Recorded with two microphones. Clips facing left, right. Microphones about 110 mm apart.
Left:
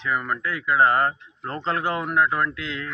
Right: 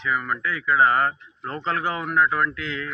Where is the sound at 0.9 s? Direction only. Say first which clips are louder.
Even; 35° left (ahead or behind).